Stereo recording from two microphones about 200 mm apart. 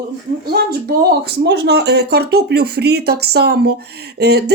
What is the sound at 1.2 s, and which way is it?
Speech, 55° right (ahead or behind).